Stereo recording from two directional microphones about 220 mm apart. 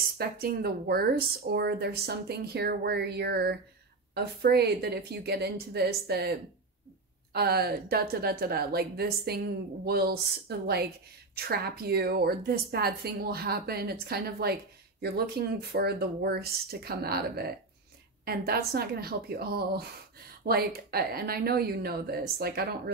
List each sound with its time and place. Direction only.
0.2 s a woman's voice: 45° right (ahead or behind)
7.3 s a woman's voice: 45° right (ahead or behind)